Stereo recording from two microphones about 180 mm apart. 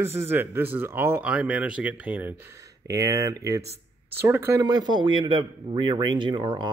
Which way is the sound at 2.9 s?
20° right (ahead or behind).